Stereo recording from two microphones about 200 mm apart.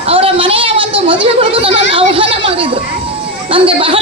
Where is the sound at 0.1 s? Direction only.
30° right (ahead or behind).